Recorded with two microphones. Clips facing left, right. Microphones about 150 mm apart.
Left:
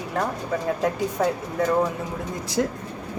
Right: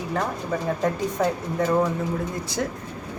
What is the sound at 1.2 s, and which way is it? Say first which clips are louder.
Speech: even; centre (ahead or behind).